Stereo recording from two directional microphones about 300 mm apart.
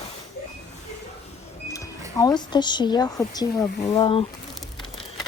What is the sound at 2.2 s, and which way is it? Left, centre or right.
Speech, centre.